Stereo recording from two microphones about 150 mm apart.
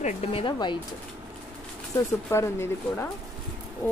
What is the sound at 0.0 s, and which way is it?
Speech, 40° left (ahead or behind).